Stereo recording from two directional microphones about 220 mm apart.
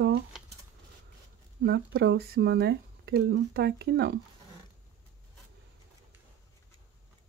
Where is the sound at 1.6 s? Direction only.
50° right (ahead or behind).